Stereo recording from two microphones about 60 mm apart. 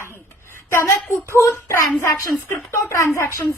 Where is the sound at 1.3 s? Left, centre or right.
Left.